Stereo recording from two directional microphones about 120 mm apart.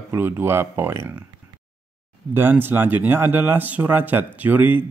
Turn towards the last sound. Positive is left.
turn(degrees=-15)  # may be behind; listen again after turning